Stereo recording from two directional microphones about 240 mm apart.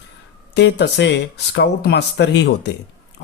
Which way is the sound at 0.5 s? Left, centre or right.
Left.